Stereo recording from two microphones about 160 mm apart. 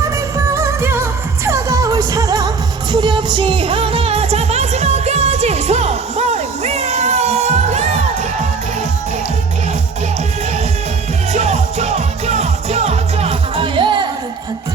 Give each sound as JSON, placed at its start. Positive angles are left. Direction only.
{"t": 0.3, "sound": "music", "side_deg": -15}
{"t": 11.3, "sound": "music", "side_deg": -45}